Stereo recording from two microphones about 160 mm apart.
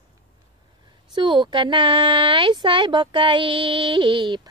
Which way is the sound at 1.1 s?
30° right (ahead or behind).